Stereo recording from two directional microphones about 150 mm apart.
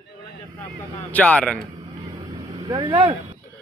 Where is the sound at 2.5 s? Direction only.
35° right (ahead or behind).